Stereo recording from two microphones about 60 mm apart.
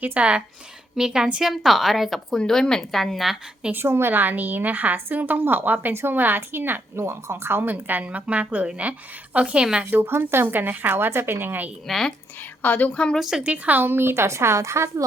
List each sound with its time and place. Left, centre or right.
0.0 s a woman's voice: right; by 3.3 s centre
3.7 s a woman's voice: right
4.1 s a woman's voice: right
7.0 s a woman's voice: right
8.0 s a woman's voice: right
9.9 s a woman's voice: right
11.9 s a woman's voice: centre
12.6 s a woman's voice: left
13.1 s a woman's voice: centre
13.4 s a woman's voice: right